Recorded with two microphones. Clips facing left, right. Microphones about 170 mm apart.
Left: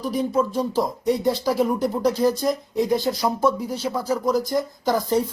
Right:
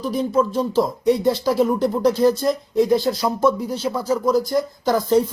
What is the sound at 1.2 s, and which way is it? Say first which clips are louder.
Speech: right 3 dB; 15° left (ahead or behind).